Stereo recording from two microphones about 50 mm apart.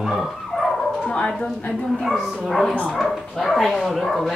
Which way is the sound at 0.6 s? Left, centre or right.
Centre.